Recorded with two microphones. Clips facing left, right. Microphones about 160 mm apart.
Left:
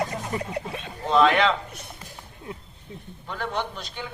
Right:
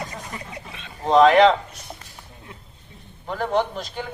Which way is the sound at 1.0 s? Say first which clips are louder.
Right 6 dB; 40° right (ahead or behind).